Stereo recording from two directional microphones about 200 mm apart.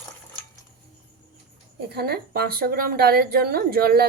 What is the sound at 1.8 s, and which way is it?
Speech, 50° right (ahead or behind).